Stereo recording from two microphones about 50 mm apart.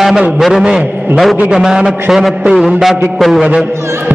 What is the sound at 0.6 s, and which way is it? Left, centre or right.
A man's voice, centre.